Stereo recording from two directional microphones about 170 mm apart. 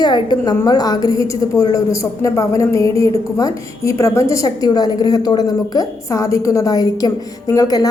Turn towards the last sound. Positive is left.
turn(degrees=20)  # may be behind; listen again after turning